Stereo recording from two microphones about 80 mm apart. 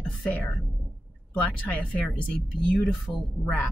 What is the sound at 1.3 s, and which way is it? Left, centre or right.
Speech, centre.